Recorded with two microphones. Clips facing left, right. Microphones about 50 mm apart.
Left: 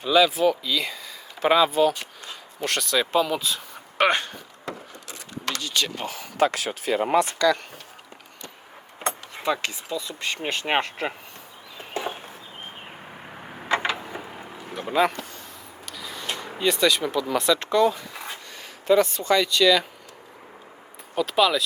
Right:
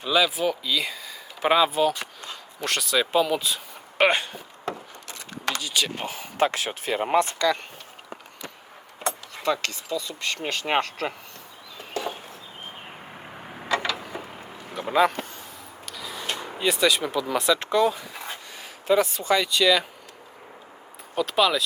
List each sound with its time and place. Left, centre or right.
0.0 s speech: centre
5.6 s speech: centre
6.1 s speech: right
9.4 s speech: centre
11.8 s a sound: left
13.7 s a sound: left
14.2 s a sound: centre
15.9 s speech: centre
21.2 s speech: centre